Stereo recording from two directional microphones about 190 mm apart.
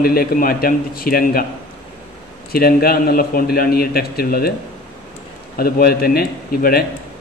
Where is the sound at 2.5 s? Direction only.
55° left (ahead or behind).